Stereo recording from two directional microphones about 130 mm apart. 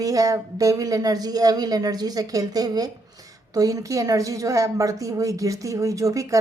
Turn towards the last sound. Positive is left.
turn(degrees=-25)  # may be behind; listen again after turning